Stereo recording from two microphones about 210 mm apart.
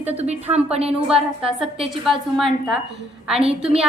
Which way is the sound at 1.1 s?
5° right (ahead or behind).